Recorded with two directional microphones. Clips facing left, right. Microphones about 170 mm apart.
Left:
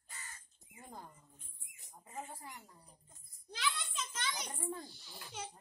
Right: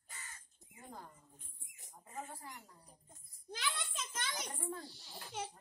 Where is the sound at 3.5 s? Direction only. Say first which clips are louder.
Left 2 dB; 50° right (ahead or behind).